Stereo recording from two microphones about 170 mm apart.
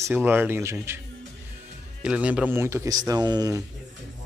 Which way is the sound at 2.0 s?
5° right (ahead or behind).